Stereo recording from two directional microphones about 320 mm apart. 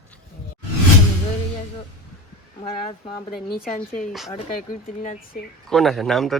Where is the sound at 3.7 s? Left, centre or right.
Left.